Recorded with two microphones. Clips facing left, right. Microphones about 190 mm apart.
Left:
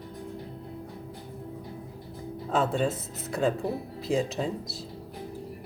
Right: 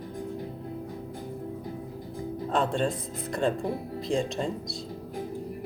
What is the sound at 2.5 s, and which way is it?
Speech, 5° left (ahead or behind).